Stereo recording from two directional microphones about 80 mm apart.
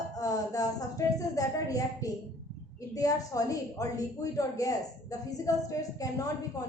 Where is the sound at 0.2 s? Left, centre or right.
Left.